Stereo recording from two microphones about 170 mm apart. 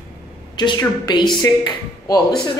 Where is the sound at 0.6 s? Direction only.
25° left (ahead or behind).